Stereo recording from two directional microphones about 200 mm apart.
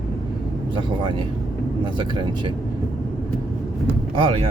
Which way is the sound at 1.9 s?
25° right (ahead or behind).